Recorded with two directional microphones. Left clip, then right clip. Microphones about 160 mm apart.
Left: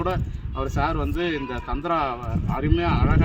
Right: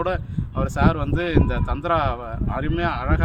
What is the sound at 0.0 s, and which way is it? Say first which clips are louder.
Speech: right 2 dB; 30° right (ahead or behind).